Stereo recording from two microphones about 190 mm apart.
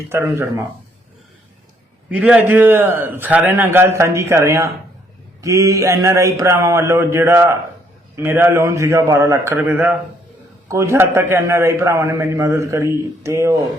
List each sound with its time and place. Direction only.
0.1 s a man's voice: 15° right (ahead or behind)
2.0 s a man's voice: 5° right (ahead or behind)